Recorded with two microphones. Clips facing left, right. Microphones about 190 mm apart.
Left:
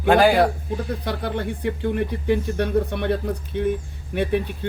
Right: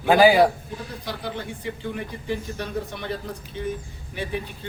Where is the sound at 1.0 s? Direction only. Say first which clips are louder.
Left 3 dB; 60° left (ahead or behind).